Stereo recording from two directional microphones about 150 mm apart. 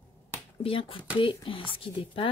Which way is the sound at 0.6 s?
35° left (ahead or behind).